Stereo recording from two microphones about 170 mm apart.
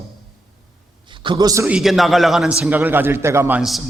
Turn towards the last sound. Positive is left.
turn(degrees=-15)  # may be behind; listen again after turning